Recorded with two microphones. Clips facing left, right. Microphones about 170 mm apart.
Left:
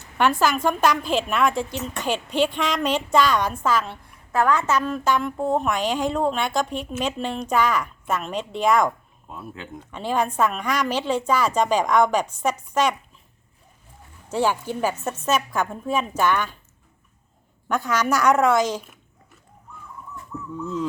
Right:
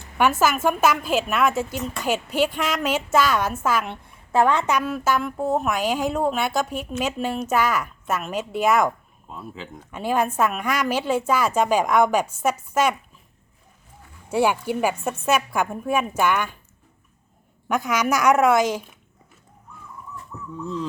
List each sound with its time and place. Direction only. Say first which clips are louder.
0.2 s speech: even; 5° right (ahead or behind)
4.3 s a woman's voice: right 2 dB; 25° right (ahead or behind)
4.7 s a woman's voice: even; 10° right (ahead or behind)
9.9 s speech: right 1 dB; 10° right (ahead or behind)
14.3 s speech: right 2 dB; 10° right (ahead or behind)
17.7 s speech: even; 10° right (ahead or behind)